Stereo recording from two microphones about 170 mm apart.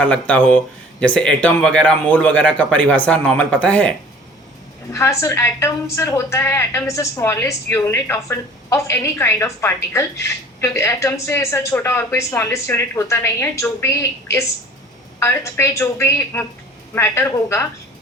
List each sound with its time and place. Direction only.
0.0 s a woman's voice: 5° left (ahead or behind)